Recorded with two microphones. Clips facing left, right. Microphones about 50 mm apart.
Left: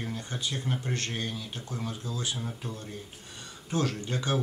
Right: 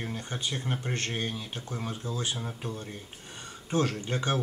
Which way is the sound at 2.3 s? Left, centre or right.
Centre.